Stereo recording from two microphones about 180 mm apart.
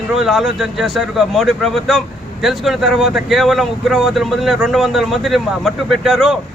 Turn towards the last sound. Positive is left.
turn(degrees=0)  # may be behind; listen again after turning